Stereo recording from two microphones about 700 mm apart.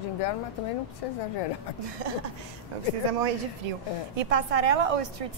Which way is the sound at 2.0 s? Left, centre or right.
Right.